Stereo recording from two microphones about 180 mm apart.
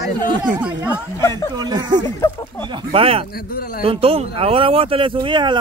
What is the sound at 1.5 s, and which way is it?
Speech, 25° right (ahead or behind).